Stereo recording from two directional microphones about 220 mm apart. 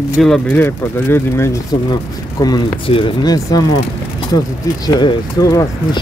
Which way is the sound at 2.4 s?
20° left (ahead or behind).